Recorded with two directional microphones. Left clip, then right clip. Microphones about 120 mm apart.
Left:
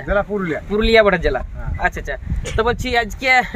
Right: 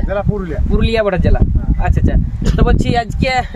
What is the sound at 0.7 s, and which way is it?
Speech, 30° right (ahead or behind).